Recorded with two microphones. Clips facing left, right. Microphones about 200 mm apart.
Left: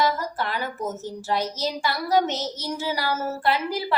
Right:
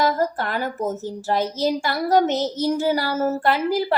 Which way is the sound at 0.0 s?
50° right (ahead or behind).